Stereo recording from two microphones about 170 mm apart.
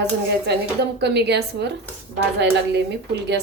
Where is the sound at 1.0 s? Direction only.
80° right.